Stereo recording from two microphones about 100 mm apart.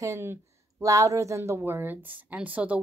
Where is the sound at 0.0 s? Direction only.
30° right (ahead or behind).